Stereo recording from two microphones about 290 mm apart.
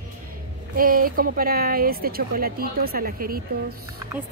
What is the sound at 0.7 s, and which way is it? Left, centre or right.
Speech, right.